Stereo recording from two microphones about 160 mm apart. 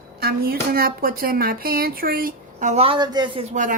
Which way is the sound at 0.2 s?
75° right (ahead or behind).